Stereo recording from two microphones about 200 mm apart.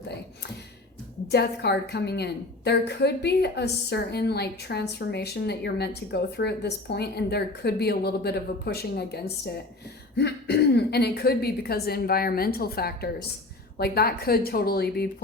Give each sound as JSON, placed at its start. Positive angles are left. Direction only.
{"t": 1.3, "sound": "a woman's voice", "side_deg": 55}